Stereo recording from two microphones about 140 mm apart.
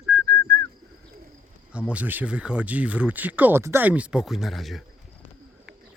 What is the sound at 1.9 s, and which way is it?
Speech, 10° right (ahead or behind).